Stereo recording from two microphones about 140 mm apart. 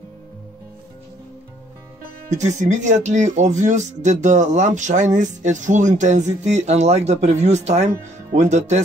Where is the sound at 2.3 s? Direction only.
60° right (ahead or behind).